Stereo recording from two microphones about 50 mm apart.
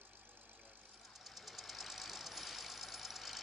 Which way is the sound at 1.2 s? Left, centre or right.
Centre.